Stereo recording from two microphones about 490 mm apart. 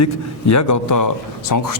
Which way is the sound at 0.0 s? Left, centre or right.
Left.